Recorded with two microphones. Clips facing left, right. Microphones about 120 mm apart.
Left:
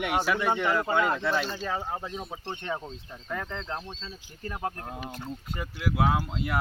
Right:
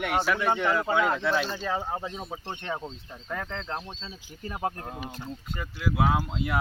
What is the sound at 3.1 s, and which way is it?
Speech, centre (ahead or behind).